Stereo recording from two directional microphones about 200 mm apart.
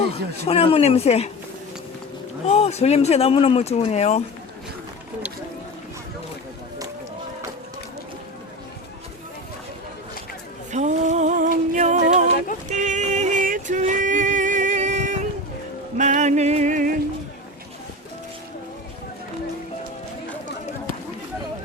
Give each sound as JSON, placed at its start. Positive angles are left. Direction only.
{"t": 0.0, "sound": "speech", "side_deg": 30}
{"t": 2.5, "sound": "speech", "side_deg": 30}
{"t": 10.7, "sound": "music", "side_deg": -35}
{"t": 12.7, "sound": "a sound", "side_deg": -35}
{"t": 16.0, "sound": "music", "side_deg": -35}